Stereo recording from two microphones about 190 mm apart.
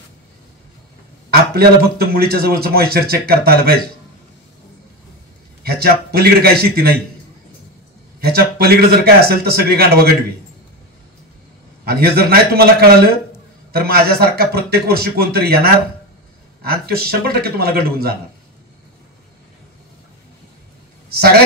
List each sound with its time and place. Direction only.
1.3 s a man's voice: 55° right (ahead or behind)
5.6 s a man's voice: 55° right (ahead or behind)
8.2 s a man's voice: 55° right (ahead or behind)
11.8 s a man's voice: 55° right (ahead or behind)
21.1 s a man's voice: 55° right (ahead or behind)